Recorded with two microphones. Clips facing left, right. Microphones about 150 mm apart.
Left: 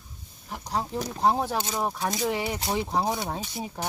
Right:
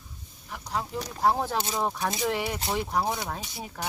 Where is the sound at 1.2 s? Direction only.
20° left (ahead or behind).